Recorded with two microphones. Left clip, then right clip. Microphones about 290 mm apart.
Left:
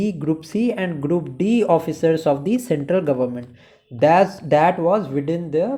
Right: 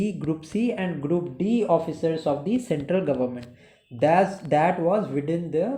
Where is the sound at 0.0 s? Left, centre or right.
Left.